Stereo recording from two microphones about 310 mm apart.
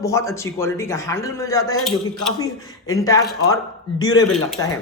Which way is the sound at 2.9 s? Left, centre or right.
Centre.